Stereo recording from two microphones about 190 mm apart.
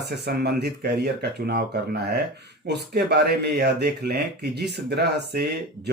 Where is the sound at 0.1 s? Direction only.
60° right (ahead or behind).